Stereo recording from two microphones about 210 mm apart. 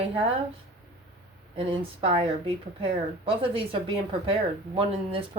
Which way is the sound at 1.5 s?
25° right (ahead or behind).